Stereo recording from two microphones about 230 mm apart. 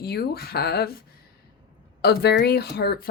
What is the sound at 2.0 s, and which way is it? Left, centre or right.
Speech, left.